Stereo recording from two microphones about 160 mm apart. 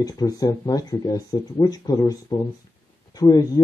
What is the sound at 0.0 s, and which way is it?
Speech, 20° left (ahead or behind).